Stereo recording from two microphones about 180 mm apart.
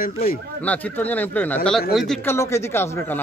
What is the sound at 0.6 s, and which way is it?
Speech, 10° left (ahead or behind).